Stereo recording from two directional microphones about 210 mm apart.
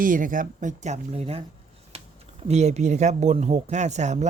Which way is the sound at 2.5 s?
30° right (ahead or behind).